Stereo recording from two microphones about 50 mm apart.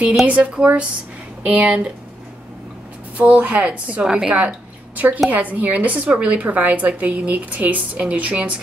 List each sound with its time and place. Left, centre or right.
0.3 s a woman's voice: right
3.2 s a woman's voice: right
4.0 s a woman's voice: centre
4.4 s a woman's voice: right